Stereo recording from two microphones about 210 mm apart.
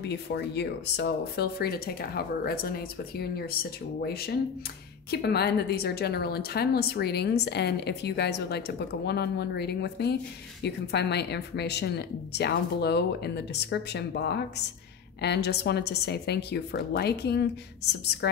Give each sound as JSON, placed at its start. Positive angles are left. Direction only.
{"t": 0.0, "sound": "a woman's voice", "side_deg": 55}